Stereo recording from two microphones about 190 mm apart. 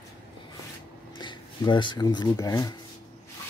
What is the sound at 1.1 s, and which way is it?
Speech, 25° left (ahead or behind).